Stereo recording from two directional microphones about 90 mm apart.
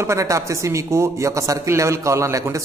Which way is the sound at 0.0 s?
35° right (ahead or behind).